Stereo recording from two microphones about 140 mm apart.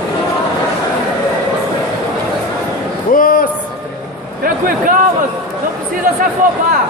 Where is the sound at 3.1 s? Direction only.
80° left.